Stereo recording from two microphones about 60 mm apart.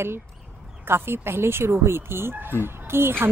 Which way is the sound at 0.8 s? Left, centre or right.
Right.